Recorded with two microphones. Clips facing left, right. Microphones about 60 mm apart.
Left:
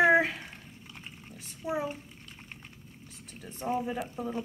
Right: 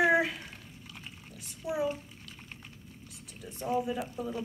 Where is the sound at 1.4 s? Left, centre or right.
Left.